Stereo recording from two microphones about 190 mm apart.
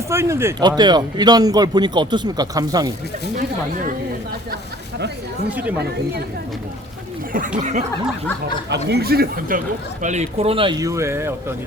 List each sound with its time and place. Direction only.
0.1 s speech: 15° right (ahead or behind)
5.5 s speech: 5° right (ahead or behind)
7.6 s snicker: 40° right (ahead or behind)
8.7 s speech: 60° right (ahead or behind)
10.0 s speech: 40° right (ahead or behind); by 11.5 s 15° right (ahead or behind)